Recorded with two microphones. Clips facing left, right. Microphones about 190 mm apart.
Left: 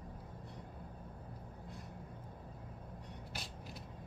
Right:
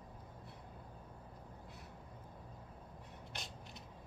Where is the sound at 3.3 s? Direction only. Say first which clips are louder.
Left 1 dB; 5° left (ahead or behind).